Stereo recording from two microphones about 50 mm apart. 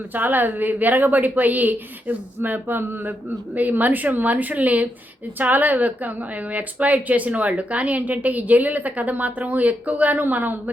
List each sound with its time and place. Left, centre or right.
0.1 s a woman's voice: right